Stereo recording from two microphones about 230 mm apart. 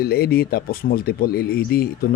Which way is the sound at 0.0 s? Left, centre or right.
Left.